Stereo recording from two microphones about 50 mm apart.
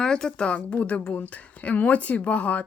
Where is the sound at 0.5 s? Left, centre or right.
Left.